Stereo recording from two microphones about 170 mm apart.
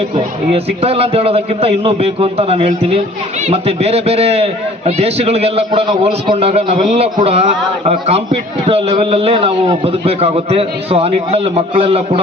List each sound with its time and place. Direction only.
0.5 s a man's voice: 35° right (ahead or behind)